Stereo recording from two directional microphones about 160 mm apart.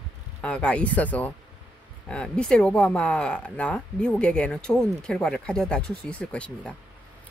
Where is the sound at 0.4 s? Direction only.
5° left (ahead or behind).